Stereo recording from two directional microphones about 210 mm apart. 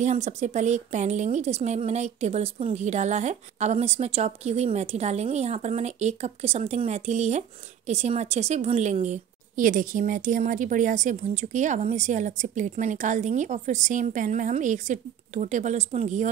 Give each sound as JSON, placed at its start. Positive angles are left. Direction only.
{"t": 0.0, "sound": "a woman's voice", "side_deg": -35}